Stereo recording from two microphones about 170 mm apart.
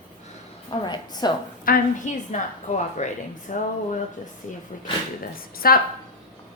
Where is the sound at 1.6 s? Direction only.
50° left (ahead or behind).